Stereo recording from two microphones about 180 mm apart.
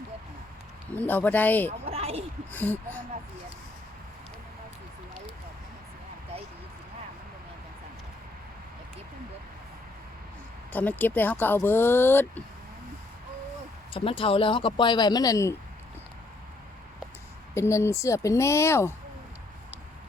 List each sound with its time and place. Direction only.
0.9 s speech: 10° left (ahead or behind)
1.8 s a sound: 35° right (ahead or behind)
2.5 s speech: 10° left (ahead or behind)
10.7 s speech: 10° left (ahead or behind)
13.9 s speech: 30° left (ahead or behind)
17.5 s speech: 15° left (ahead or behind)